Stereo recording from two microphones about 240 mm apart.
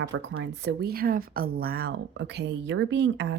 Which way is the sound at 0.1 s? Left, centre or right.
Right.